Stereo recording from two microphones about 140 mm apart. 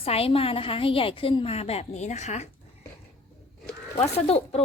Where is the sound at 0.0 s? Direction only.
45° left (ahead or behind).